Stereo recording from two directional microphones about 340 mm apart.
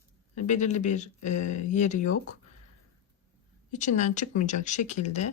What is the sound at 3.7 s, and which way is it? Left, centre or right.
Speech, left.